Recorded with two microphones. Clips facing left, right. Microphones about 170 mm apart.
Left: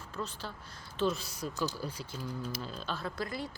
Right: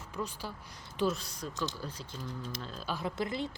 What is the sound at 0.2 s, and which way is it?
Speech, 10° right (ahead or behind).